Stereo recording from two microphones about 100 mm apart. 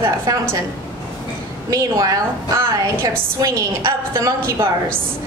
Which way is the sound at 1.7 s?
35° right (ahead or behind).